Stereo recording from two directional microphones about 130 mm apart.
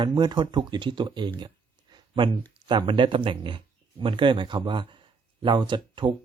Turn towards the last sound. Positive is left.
turn(degrees=-40)  # may be behind; listen again after turning